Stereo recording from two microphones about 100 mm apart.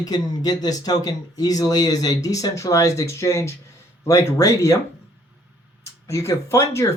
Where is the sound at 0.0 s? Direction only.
40° left (ahead or behind).